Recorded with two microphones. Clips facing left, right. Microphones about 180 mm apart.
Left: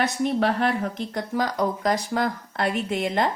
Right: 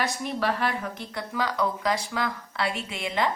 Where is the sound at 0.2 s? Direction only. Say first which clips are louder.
Left 5 dB; 55° left (ahead or behind).